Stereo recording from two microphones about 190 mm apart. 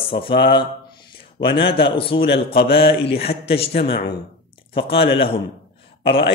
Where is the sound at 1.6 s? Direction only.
25° left (ahead or behind).